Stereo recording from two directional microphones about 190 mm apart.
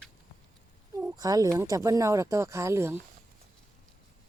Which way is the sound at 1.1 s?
20° right (ahead or behind).